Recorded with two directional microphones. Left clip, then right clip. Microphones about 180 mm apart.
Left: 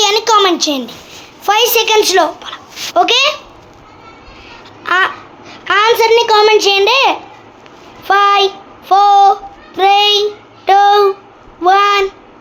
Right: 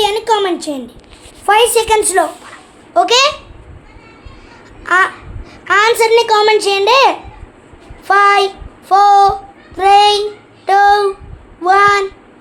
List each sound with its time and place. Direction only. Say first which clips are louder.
0.0 s a sound: left 3 dB; 5° left (ahead or behind)
1.5 s a woman's voice: right 1 dB; 20° left (ahead or behind)
4.8 s a child's voice: right 1 dB; 15° left (ahead or behind)